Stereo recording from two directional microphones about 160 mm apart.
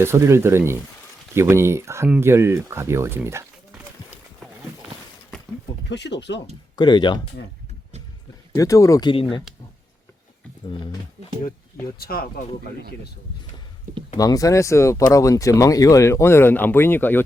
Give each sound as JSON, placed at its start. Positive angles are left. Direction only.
{"t": 0.0, "sound": "speech", "side_deg": -15}
{"t": 5.9, "sound": "speech", "side_deg": 90}
{"t": 6.7, "sound": "speech", "side_deg": 25}
{"t": 8.5, "sound": "speech", "side_deg": 20}
{"t": 11.9, "sound": "speech", "side_deg": 70}
{"t": 14.2, "sound": "speech", "side_deg": 20}